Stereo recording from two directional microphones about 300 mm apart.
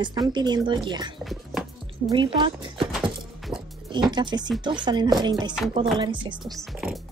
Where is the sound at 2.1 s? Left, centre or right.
Centre.